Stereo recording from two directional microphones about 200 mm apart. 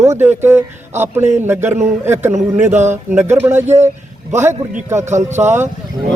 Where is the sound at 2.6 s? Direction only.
35° right (ahead or behind).